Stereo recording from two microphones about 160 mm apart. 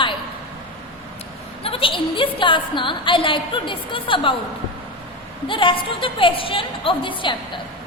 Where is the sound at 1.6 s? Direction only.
35° left (ahead or behind).